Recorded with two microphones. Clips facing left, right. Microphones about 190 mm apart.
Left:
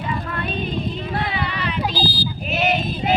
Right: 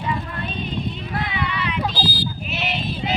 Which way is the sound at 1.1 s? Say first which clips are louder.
Right 1 dB; 35° left (ahead or behind).